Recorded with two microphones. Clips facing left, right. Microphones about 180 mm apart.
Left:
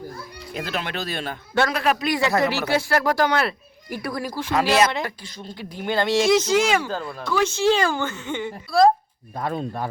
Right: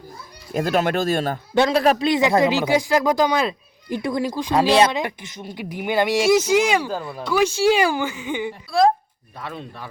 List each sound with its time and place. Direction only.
0.5 s speech: 45° right (ahead or behind)
1.7 s a man's voice: 35° right (ahead or behind)
2.0 s speech: 20° right (ahead or behind)
4.5 s speech: 30° right (ahead or behind)
4.9 s speech: 20° right (ahead or behind)
9.3 s speech: 45° left (ahead or behind)